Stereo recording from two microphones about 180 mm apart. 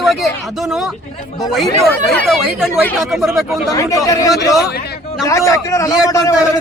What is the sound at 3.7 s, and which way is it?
Speech, 20° left (ahead or behind).